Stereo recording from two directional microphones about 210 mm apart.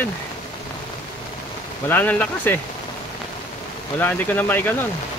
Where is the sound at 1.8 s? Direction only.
10° left (ahead or behind).